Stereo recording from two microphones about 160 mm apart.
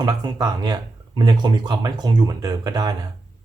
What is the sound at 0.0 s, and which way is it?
Speech, 25° right (ahead or behind).